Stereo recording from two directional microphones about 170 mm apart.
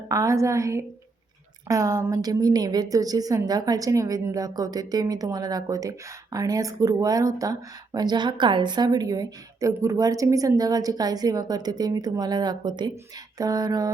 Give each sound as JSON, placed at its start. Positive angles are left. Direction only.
{"t": 0.1, "sound": "a woman's voice", "side_deg": -20}